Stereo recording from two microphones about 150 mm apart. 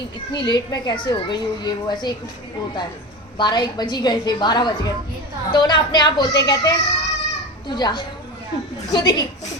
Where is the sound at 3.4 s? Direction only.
30° left (ahead or behind).